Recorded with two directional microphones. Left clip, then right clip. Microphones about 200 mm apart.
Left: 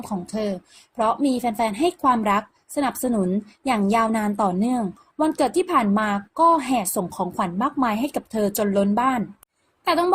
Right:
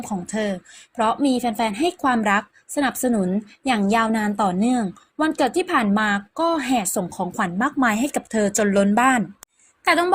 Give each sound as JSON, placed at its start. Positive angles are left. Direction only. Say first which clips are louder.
{"t": 0.1, "sound": "a woman's voice", "louder": "right 1 dB", "side_deg": -20}